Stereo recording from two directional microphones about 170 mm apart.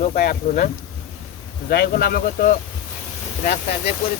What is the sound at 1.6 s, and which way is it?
Speech, 65° left (ahead or behind).